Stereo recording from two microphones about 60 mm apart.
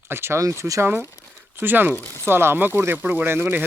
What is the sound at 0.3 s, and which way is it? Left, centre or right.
Speech, right.